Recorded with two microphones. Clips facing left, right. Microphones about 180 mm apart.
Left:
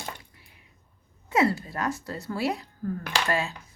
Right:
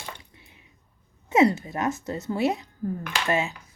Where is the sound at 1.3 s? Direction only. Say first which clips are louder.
Right 4 dB; 20° right (ahead or behind).